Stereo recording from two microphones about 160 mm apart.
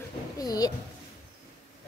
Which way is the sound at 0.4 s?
25° left (ahead or behind).